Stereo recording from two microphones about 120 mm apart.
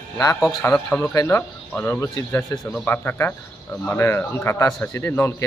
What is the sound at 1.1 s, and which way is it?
A man's voice, 20° left (ahead or behind).